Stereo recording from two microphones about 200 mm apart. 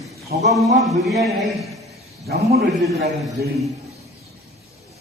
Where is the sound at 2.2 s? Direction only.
50° right (ahead or behind).